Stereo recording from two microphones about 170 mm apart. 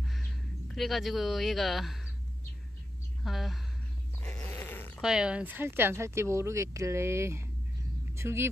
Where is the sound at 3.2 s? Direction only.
Centre (ahead or behind).